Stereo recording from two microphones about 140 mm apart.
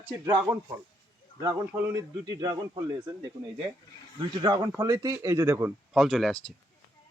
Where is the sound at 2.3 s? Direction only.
25° right (ahead or behind).